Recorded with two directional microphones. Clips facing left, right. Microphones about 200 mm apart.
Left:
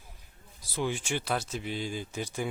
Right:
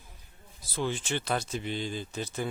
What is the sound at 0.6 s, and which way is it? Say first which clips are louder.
Speech: even; 10° left (ahead or behind).